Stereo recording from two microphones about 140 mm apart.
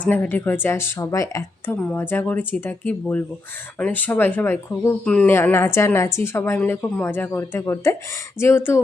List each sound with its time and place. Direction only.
0.0 s speech: 10° left (ahead or behind)
5.0 s speech: 5° left (ahead or behind)
5.3 s a woman's voice: 15° left (ahead or behind)